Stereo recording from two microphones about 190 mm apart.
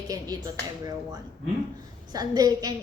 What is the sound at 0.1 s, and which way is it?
Speech, 20° right (ahead or behind).